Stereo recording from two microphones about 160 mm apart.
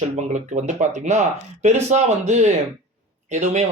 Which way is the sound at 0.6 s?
45° right (ahead or behind).